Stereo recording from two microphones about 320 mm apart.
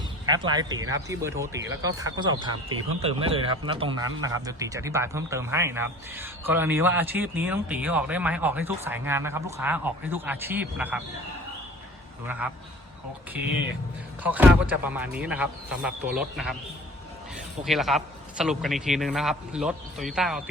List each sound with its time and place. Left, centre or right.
0.3 s speech: centre
14.3 s a man's voice: centre
17.7 s a man's voice: centre